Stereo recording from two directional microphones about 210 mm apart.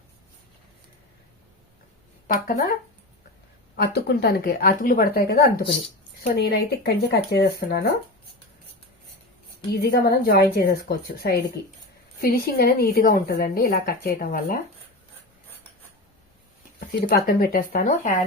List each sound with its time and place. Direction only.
3.8 s speech: 50° left (ahead or behind)
9.7 s speech: 45° left (ahead or behind)
16.9 s speech: 45° left (ahead or behind)